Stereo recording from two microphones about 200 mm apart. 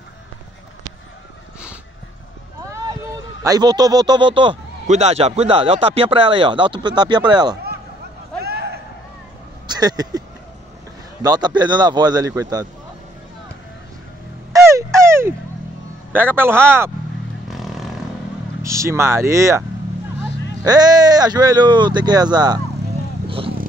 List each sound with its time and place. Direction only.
3.4 s a man's voice: 20° right (ahead or behind)
8.4 s a sound: 55° right (ahead or behind)
9.7 s speech: 20° right (ahead or behind)
11.2 s a man's voice: 20° right (ahead or behind)
14.5 s frog: 15° right (ahead or behind)
16.1 s speech: 10° right (ahead or behind)
17.5 s vehicle: centre (ahead or behind)
18.6 s speech: 15° right (ahead or behind)
20.6 s a man's voice: 20° right (ahead or behind)
23.2 s vehicle: 25° right (ahead or behind)